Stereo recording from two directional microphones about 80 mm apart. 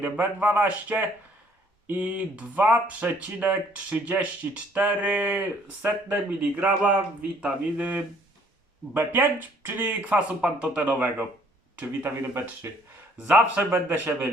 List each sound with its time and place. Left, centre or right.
0.0 s speech: right
13.2 s speech: right